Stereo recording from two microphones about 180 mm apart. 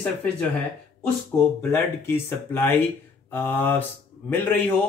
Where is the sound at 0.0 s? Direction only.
5° left (ahead or behind).